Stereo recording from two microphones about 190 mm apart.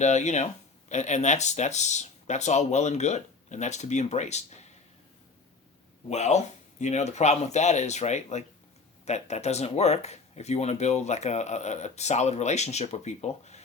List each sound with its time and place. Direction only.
0.0 s speech: 40° left (ahead or behind)
6.1 s speech: 35° left (ahead or behind)